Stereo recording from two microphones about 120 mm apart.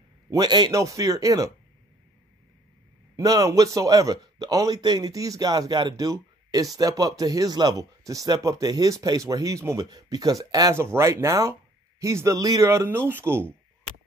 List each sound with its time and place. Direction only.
0.3 s a man's voice: 35° right (ahead or behind)
3.2 s a man's voice: 30° right (ahead or behind)